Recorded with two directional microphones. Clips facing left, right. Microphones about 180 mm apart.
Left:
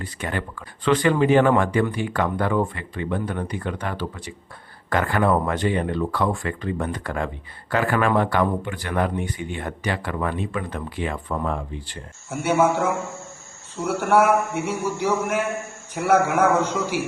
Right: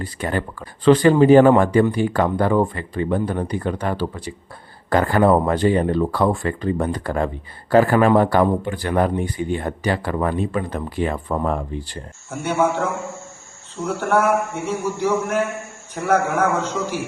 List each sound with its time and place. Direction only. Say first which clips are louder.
0.0 s speech: right 5 dB; 35° right (ahead or behind)
12.3 s speech: left 1 dB; 10° left (ahead or behind)
13.8 s speech: left 1 dB; 10° left (ahead or behind)